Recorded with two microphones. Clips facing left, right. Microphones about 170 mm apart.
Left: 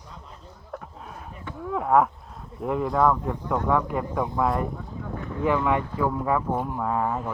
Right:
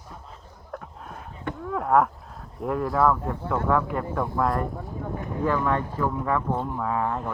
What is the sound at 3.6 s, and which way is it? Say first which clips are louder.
Speech: right 1 dB; 10° left (ahead or behind).